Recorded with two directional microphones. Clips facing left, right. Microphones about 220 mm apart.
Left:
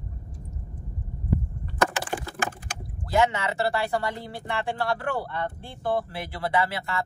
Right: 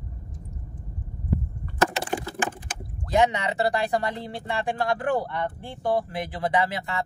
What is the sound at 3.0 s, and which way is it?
Speech, 20° right (ahead or behind).